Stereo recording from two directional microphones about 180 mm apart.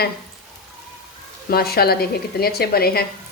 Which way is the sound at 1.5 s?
60° left (ahead or behind).